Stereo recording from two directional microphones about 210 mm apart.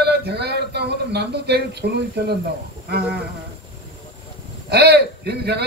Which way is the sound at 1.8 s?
45° right (ahead or behind).